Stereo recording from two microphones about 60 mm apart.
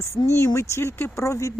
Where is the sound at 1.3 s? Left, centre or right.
Left.